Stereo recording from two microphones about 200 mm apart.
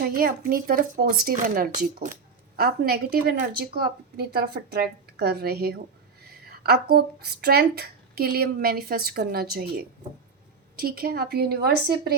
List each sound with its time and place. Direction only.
0.0 s speech: 45° right (ahead or behind)